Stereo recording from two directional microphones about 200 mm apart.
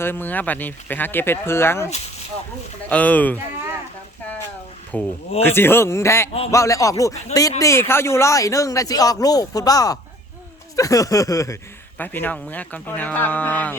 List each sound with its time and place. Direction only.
0.0 s speech: 10° left (ahead or behind)
2.9 s speech: 5° left (ahead or behind)
4.9 s speech: 5° left (ahead or behind)